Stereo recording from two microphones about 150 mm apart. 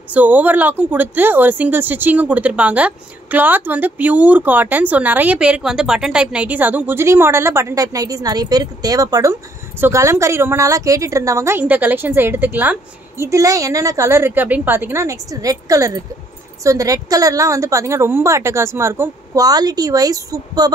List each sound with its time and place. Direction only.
0.1 s a woman's voice: 10° right (ahead or behind)